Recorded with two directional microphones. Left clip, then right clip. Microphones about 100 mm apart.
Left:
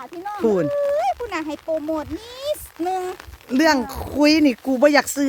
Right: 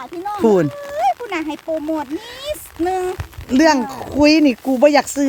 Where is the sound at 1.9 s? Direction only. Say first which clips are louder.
Right 3 dB; 30° left (ahead or behind).